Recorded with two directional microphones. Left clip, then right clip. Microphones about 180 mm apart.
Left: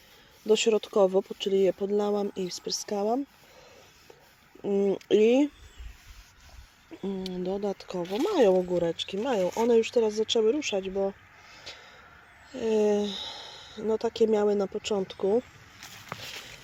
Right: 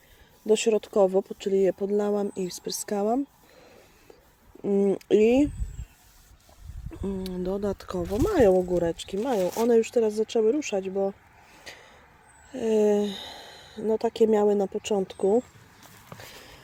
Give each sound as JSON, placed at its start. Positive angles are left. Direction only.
{"t": 0.4, "sound": "speech", "side_deg": 0}
{"t": 4.8, "sound": "speech", "side_deg": -15}
{"t": 7.0, "sound": "speech", "side_deg": -5}
{"t": 12.5, "sound": "speech", "side_deg": -10}
{"t": 15.0, "sound": "a sound", "side_deg": -15}